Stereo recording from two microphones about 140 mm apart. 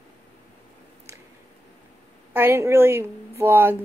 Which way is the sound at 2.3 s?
15° right (ahead or behind).